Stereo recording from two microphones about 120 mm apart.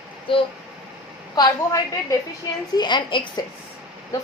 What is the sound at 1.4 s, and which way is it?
A woman's voice, 35° left (ahead or behind).